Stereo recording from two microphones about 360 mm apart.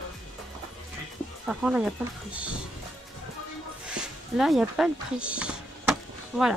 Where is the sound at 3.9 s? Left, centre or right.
Centre.